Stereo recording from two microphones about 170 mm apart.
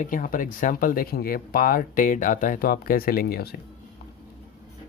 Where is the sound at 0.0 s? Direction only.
55° left (ahead or behind).